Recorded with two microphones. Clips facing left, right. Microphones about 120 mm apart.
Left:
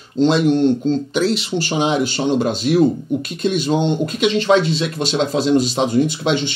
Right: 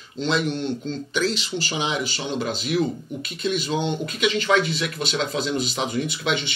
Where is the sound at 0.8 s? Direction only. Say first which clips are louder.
Left 7 dB; 30° left (ahead or behind).